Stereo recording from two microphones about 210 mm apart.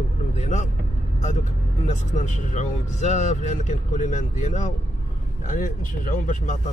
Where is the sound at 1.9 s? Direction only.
35° left (ahead or behind).